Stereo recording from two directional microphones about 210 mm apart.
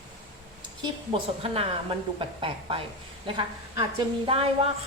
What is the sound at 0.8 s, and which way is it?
A woman's voice, 25° right (ahead or behind).